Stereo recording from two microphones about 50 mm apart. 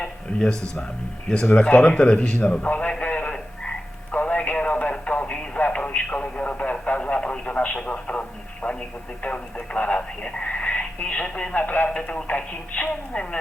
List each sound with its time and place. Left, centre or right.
1.3 s a woman's voice: centre
3.2 s frog: centre
4.1 s radio: left
8.6 s a woman's voice: left
11.5 s speech: left
11.9 s a woman's voice: centre